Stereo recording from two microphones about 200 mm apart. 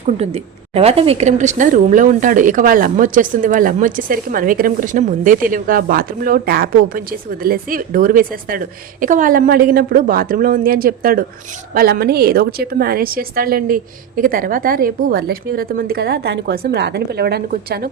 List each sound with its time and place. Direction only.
0.0 s a woman's voice: 30° right (ahead or behind); by 16.0 s 45° right (ahead or behind)
16.0 s a woman's voice: 60° right (ahead or behind)